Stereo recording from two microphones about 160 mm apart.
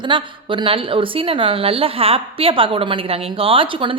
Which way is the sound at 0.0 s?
30° right (ahead or behind).